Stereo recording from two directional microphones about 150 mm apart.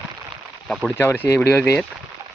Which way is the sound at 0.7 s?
Centre (ahead or behind).